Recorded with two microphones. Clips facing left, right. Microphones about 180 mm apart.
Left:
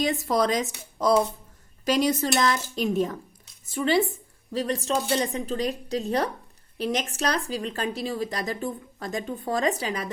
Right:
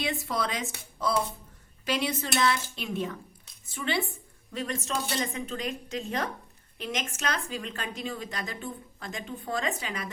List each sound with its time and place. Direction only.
0.0 s speech: 40° left (ahead or behind)